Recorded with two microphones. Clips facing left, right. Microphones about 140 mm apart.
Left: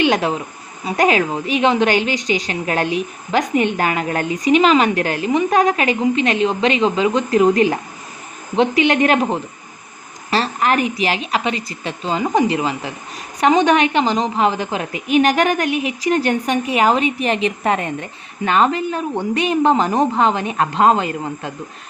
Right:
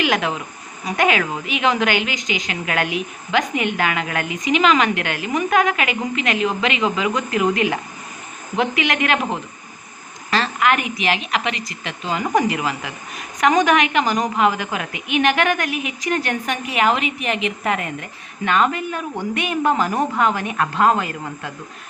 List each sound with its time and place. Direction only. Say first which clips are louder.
0.0 s a woman's voice: left 4 dB; 35° left (ahead or behind)